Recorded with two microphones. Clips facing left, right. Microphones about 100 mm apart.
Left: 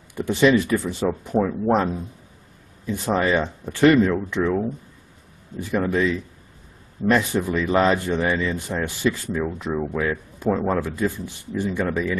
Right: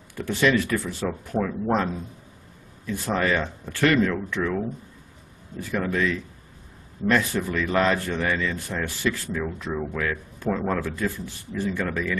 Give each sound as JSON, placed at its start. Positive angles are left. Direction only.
{"t": 0.1, "sound": "speech", "side_deg": 20}
{"t": 2.9, "sound": "speech", "side_deg": 20}
{"t": 5.8, "sound": "speech", "side_deg": 20}